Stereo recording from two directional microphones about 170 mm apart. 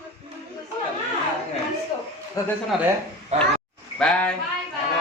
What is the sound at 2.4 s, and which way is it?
Speech, 20° left (ahead or behind).